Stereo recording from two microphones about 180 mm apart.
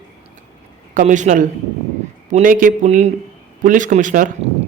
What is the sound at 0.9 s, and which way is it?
Speech, 45° right (ahead or behind).